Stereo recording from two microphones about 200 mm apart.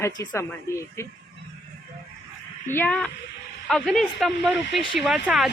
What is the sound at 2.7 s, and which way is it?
A woman's voice, 10° left (ahead or behind).